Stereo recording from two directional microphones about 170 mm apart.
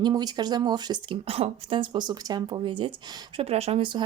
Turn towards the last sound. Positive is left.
turn(degrees=-30)  # may be behind; listen again after turning